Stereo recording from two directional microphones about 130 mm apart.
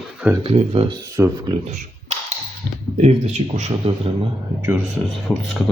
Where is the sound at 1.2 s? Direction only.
30° right (ahead or behind).